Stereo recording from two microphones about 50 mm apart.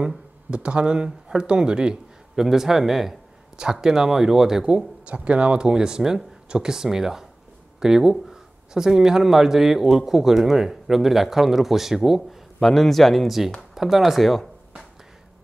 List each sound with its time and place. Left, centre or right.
0.5 s speech: right; by 14.5 s centre